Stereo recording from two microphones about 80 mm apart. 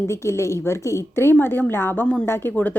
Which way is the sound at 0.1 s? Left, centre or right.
Left.